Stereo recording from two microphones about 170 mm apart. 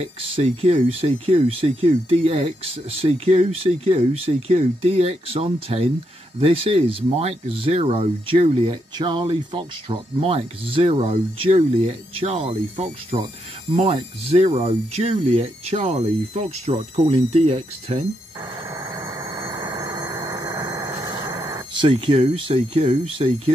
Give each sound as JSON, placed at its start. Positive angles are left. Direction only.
{"t": 0.0, "sound": "speech", "side_deg": -35}
{"t": 18.7, "sound": "vehicle", "side_deg": -20}